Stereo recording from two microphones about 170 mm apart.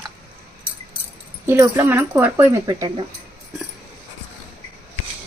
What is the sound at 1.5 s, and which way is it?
Speech, 15° right (ahead or behind).